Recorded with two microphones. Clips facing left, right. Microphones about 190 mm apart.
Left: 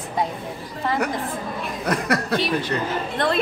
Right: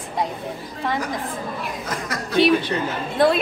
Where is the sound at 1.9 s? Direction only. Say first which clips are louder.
Left 11 dB; 65° left (ahead or behind).